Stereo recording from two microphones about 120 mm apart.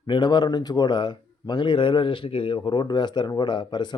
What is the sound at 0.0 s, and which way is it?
Speech, 40° left (ahead or behind).